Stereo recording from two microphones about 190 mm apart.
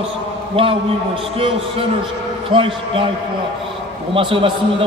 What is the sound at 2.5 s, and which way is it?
Speech, 25° right (ahead or behind).